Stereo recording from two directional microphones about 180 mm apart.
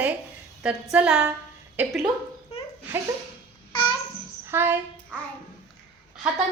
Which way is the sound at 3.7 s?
25° left (ahead or behind).